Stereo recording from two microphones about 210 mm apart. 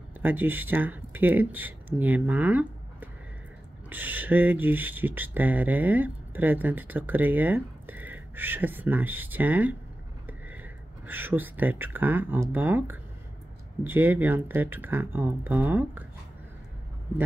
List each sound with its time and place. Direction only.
0.2 s speech: 10° right (ahead or behind)